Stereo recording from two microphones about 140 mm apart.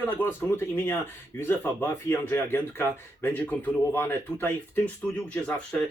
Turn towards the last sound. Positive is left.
turn(degrees=5)  # may be behind; listen again after turning